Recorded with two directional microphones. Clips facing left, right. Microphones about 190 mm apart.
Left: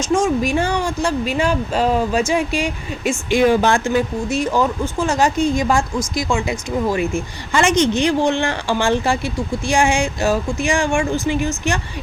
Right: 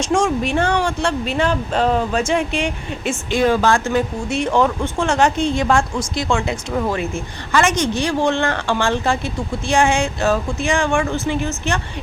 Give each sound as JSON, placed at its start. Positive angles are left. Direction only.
{"t": 0.0, "sound": "a woman's voice", "side_deg": 5}
{"t": 3.9, "sound": "a woman's voice", "side_deg": 5}